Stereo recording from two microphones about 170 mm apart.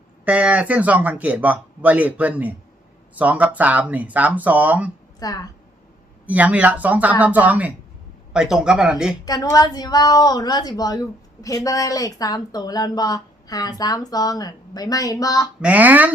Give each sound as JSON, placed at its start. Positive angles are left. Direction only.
{"t": 0.3, "sound": "speech", "side_deg": -10}
{"t": 5.2, "sound": "speech", "side_deg": 20}
{"t": 6.2, "sound": "speech", "side_deg": -10}
{"t": 9.2, "sound": "speech", "side_deg": 20}
{"t": 15.6, "sound": "speech", "side_deg": -10}